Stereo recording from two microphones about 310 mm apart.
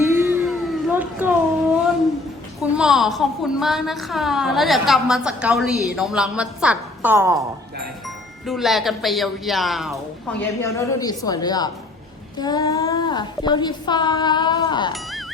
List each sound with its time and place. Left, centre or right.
0.1 s a sound: centre
2.6 s a woman's voice: centre
8.4 s a woman's voice: centre